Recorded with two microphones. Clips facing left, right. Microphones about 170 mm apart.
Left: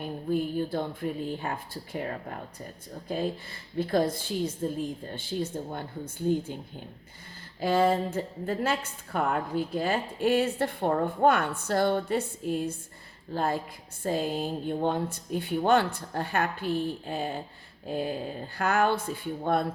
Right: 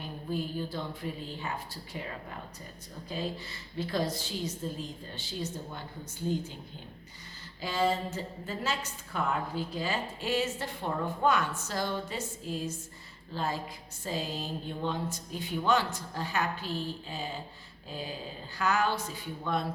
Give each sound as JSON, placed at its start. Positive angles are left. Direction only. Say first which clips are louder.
{"t": 0.0, "sound": "a woman's voice", "louder": "left 6 dB", "side_deg": 55}